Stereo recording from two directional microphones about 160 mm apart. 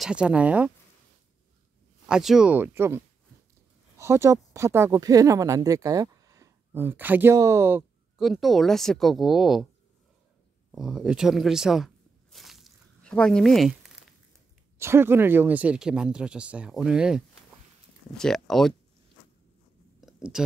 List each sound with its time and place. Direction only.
0.0 s speech: 5° right (ahead or behind)
2.0 s speech: 5° right (ahead or behind)
4.0 s speech: 15° right (ahead or behind)
8.2 s speech: centre (ahead or behind)
10.7 s a sound: 5° right (ahead or behind)
14.8 s speech: 15° right (ahead or behind); by 18.8 s centre (ahead or behind)
20.0 s a sound: centre (ahead or behind)